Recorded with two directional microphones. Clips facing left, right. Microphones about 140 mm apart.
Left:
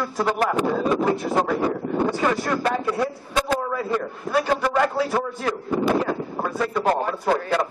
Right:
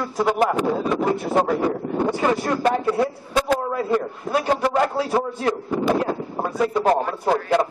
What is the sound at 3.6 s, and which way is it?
A man's voice, 25° right (ahead or behind).